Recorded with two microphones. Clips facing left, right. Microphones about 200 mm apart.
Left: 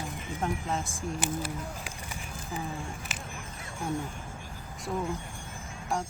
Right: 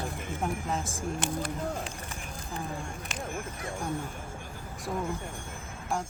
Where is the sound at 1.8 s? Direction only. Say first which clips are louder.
Right 2 dB; 10° left (ahead or behind).